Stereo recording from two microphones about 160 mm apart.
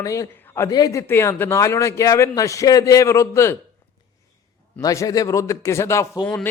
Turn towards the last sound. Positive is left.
turn(degrees=25)  # may be behind; listen again after turning